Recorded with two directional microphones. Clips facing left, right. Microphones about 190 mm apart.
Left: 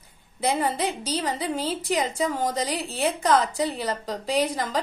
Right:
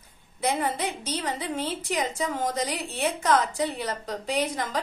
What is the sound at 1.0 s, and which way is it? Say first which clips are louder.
A woman's voice: left 3 dB; 35° left (ahead or behind).